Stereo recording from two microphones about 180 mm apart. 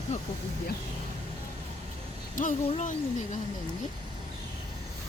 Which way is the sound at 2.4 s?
45° left (ahead or behind).